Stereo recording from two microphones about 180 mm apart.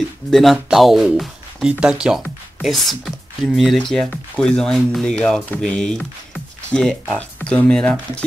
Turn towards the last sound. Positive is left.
turn(degrees=5)  # may be behind; listen again after turning